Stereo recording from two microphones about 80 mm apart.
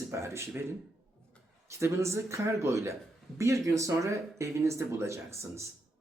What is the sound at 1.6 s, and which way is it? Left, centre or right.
Speech, right.